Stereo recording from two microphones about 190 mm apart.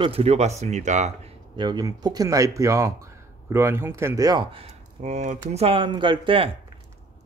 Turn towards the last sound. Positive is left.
turn(degrees=-25)  # may be behind; listen again after turning